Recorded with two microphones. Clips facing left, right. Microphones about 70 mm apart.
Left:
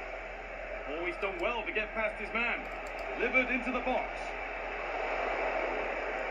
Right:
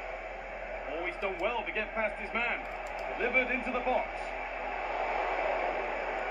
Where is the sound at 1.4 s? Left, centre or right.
Right.